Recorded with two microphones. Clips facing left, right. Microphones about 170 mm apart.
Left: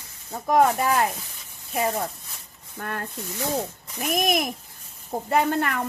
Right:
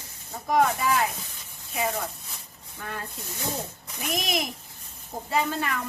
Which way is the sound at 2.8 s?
55° left (ahead or behind).